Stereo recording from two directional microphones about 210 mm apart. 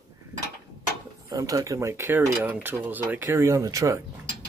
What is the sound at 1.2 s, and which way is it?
Speech, 15° right (ahead or behind).